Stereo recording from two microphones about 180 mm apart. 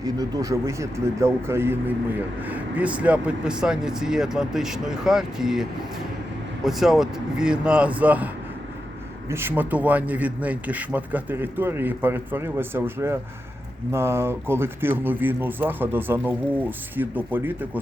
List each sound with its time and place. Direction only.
0.0 s speech: 20° right (ahead or behind); by 5.6 s centre (ahead or behind)
6.7 s speech: centre (ahead or behind)
9.3 s speech: 10° right (ahead or behind)